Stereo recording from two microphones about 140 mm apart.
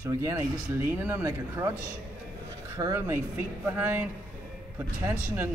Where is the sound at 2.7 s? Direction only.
20° right (ahead or behind).